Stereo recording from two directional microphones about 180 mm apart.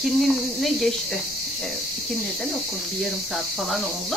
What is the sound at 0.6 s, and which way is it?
Speech, centre (ahead or behind).